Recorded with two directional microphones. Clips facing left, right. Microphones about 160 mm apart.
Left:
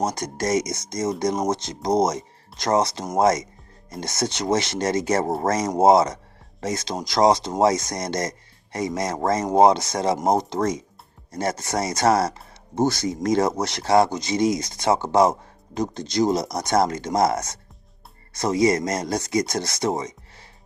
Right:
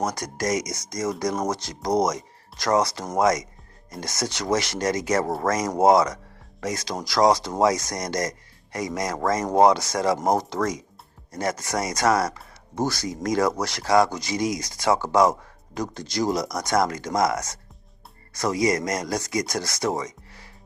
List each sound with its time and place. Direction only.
0.0 s speech: 25° left (ahead or behind)